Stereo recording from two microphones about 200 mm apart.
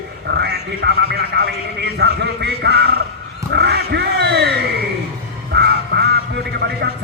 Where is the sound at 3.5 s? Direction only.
55° right (ahead or behind).